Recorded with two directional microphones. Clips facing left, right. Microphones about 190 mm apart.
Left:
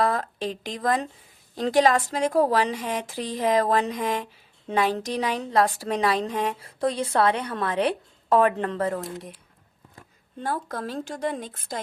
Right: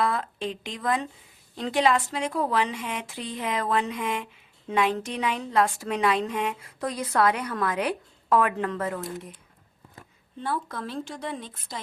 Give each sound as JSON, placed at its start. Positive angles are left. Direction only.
{"t": 0.0, "sound": "a woman's voice", "side_deg": 40}
{"t": 10.4, "sound": "speech", "side_deg": 40}